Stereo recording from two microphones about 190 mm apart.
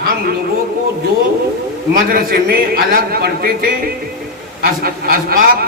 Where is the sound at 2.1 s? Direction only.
50° right (ahead or behind).